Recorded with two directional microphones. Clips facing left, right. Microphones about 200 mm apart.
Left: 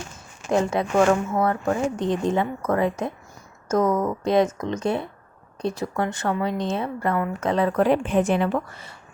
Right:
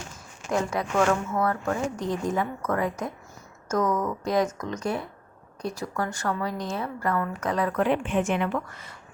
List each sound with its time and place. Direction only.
0.5 s speech: 25° left (ahead or behind)